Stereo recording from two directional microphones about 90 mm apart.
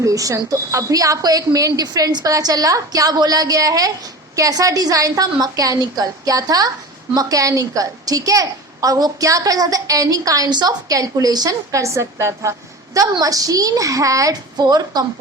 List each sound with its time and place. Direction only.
0.0 s a woman's voice: 40° right (ahead or behind)